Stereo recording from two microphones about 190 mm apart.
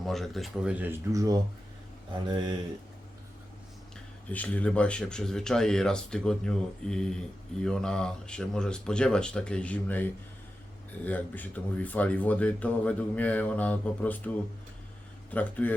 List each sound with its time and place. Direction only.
0.0 s speech: centre (ahead or behind); by 1.4 s 20° right (ahead or behind)
4.3 s speech: 5° left (ahead or behind)
15.3 s speech: 10° left (ahead or behind)